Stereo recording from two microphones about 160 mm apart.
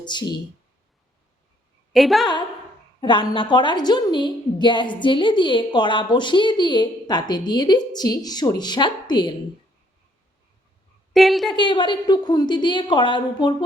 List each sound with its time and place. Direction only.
0.0 s a woman's voice: 30° left (ahead or behind)
1.9 s a woman's voice: centre (ahead or behind)
3.0 s a woman's voice: 30° left (ahead or behind)
11.1 s a woman's voice: centre (ahead or behind)
11.5 s a woman's voice: 30° left (ahead or behind)